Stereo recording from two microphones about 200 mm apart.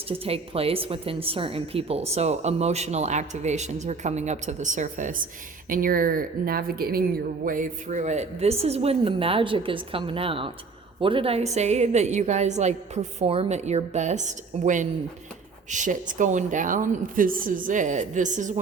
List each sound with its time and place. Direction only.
0.1 s speech: 30° right (ahead or behind)